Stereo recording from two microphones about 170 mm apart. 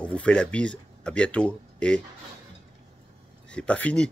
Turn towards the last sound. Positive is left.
turn(degrees=5)  # may be behind; listen again after turning